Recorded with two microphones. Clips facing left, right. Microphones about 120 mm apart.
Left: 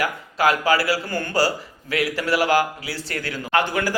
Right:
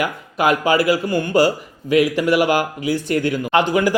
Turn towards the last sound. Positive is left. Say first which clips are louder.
# right 5 dB
turn(degrees=-15)  # may be behind; listen again after turning